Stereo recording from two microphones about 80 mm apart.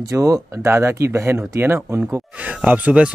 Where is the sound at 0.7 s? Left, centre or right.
Right.